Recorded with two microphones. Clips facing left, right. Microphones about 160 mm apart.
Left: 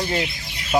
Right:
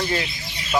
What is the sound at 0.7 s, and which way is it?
Speech, 25° left (ahead or behind).